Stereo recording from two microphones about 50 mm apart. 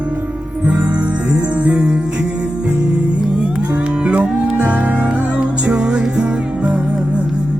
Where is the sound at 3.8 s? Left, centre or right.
Right.